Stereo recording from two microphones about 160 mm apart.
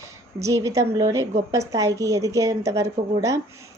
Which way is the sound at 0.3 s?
20° right (ahead or behind).